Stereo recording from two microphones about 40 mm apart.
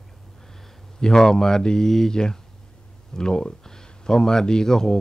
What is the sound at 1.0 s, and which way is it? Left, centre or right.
Speech, centre.